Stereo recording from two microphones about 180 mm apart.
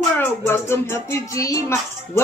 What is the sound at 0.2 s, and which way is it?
Speech, 10° left (ahead or behind).